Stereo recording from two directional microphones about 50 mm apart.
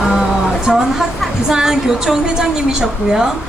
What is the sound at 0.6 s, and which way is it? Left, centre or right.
A woman's voice, centre.